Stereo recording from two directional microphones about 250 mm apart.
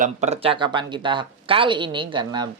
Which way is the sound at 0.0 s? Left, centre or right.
Right.